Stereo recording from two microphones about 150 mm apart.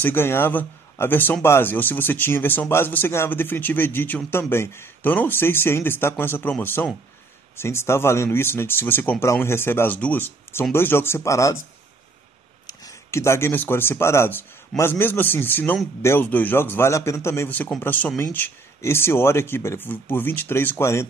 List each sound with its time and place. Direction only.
0.0 s speech: 15° left (ahead or behind)
12.6 s speech: 20° left (ahead or behind)